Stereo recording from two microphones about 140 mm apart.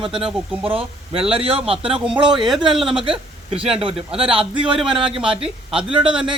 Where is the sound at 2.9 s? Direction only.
40° right (ahead or behind).